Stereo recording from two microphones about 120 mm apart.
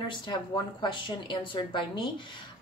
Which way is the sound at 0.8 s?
40° left (ahead or behind).